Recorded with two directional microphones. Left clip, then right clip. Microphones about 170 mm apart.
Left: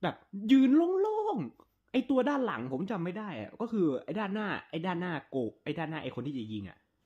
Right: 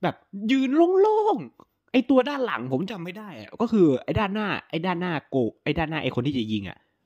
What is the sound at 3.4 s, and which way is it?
Speech, 45° right (ahead or behind).